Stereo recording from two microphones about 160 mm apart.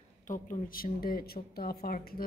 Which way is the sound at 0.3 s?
60° left (ahead or behind).